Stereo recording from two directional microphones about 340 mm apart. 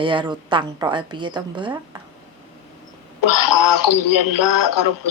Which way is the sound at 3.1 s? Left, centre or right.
Left.